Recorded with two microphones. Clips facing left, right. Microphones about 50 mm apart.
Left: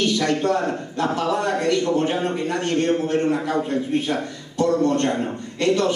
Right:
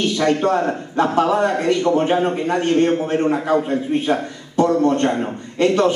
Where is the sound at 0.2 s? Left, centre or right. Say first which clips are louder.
Right 4 dB; right.